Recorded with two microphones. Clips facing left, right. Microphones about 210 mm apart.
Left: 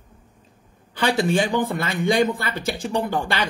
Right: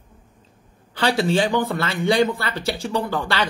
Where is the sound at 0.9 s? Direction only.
15° left (ahead or behind).